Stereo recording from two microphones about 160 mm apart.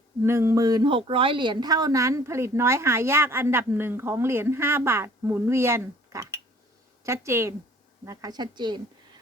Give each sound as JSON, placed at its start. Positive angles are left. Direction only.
{"t": 0.2, "sound": "speech", "side_deg": -15}